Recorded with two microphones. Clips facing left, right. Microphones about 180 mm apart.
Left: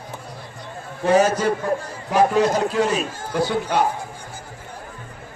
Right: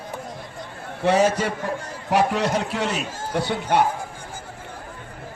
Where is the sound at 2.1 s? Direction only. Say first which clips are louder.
Left 3 dB; 70° right (ahead or behind).